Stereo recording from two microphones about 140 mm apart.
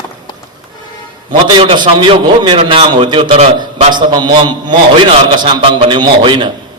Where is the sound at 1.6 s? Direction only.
35° right (ahead or behind).